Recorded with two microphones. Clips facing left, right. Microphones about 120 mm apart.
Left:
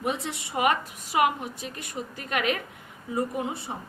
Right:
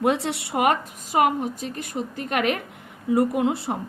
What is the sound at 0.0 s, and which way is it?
A woman's voice, 75° right (ahead or behind).